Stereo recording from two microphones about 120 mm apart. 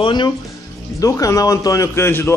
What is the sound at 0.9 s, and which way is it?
Speech, 30° left (ahead or behind).